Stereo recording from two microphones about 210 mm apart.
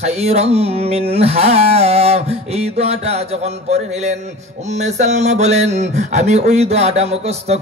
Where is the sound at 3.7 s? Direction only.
30° right (ahead or behind).